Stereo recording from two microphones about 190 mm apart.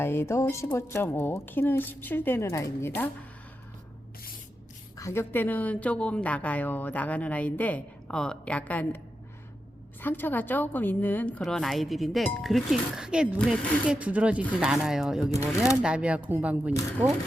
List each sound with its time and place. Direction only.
0.0 s a woman's voice: 15° left (ahead or behind)
4.9 s a woman's voice: 15° left (ahead or behind)
10.0 s a woman's voice: 10° left (ahead or behind); by 16.7 s 5° right (ahead or behind)